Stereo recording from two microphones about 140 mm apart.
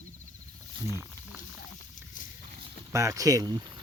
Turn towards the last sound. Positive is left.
turn(degrees=-30)  # may be behind; listen again after turning